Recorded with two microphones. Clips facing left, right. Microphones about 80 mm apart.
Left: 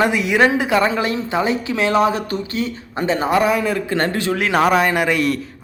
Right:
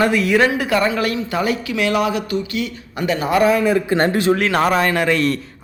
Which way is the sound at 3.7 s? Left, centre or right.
Centre.